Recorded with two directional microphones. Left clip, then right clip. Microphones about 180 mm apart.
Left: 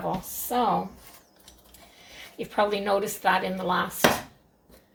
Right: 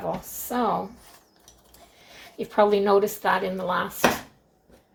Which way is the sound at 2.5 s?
35° right (ahead or behind).